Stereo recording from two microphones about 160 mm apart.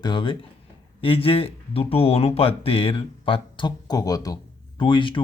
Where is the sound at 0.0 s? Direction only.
30° left (ahead or behind).